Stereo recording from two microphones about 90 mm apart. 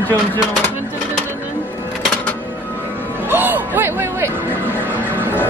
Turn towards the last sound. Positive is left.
turn(degrees=-25)  # may be behind; listen again after turning